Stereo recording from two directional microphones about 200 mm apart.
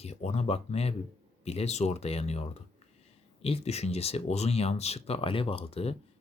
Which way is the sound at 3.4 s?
30° left (ahead or behind).